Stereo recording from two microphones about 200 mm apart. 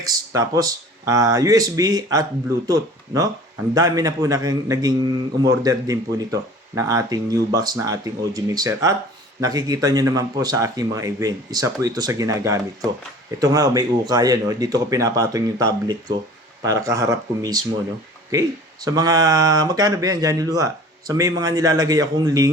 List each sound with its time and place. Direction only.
0.0 s a man's voice: 15° right (ahead or behind)